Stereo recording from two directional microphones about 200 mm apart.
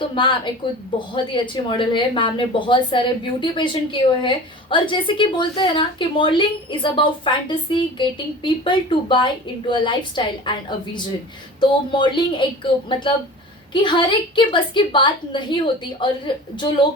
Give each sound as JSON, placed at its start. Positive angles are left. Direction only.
{"t": 0.1, "sound": "speech", "side_deg": 25}